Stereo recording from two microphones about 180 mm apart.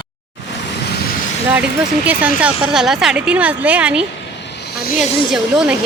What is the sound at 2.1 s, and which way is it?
Speech, 5° right (ahead or behind).